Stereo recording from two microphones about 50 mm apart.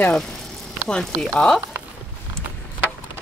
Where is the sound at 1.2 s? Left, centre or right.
Centre.